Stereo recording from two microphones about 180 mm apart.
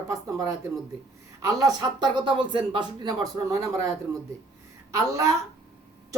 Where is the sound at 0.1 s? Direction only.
20° right (ahead or behind).